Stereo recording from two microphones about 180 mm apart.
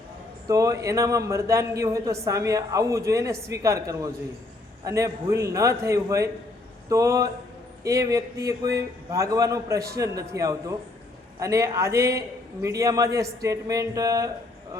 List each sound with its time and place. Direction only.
0.4 s a man's voice: 20° right (ahead or behind)